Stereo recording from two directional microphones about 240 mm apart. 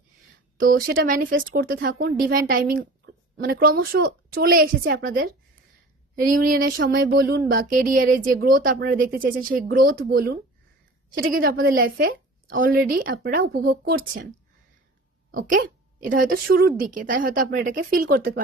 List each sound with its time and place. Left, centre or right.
0.5 s speech: right
15.3 s speech: right